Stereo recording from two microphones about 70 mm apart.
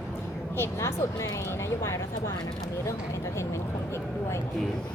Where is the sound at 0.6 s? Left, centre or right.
Left.